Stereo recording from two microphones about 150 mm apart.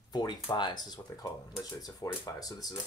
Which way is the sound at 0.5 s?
30° left (ahead or behind).